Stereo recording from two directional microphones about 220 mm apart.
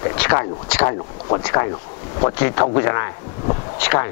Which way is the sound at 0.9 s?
25° left (ahead or behind).